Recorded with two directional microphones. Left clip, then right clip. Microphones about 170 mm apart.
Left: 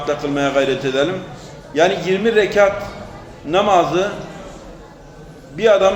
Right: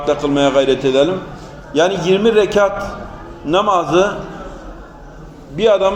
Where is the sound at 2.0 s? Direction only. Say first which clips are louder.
Right 3 dB; 25° left (ahead or behind).